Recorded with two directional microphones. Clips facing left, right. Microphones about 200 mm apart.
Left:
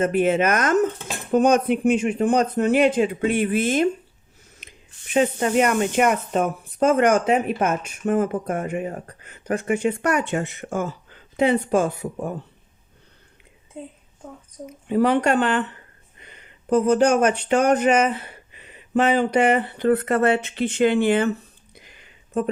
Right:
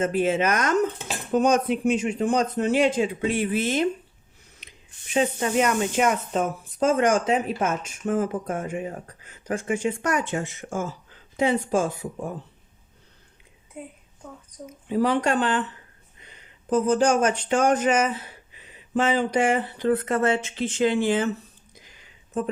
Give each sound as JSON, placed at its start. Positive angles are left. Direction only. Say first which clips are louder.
{"t": 0.0, "sound": "speech", "louder": "left 3 dB", "side_deg": 60}
{"t": 5.1, "sound": "speech", "louder": "left 3 dB", "side_deg": 60}
{"t": 13.7, "sound": "speech", "louder": "left 2 dB", "side_deg": 25}
{"t": 14.7, "sound": "speech", "louder": "left 3 dB", "side_deg": 60}
{"t": 21.8, "sound": "a sound", "louder": "left 3 dB", "side_deg": 60}